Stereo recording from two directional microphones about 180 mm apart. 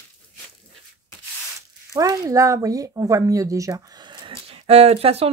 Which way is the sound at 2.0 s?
20° right (ahead or behind).